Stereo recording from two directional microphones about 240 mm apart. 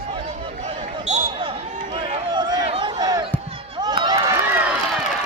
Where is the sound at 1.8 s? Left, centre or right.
Right.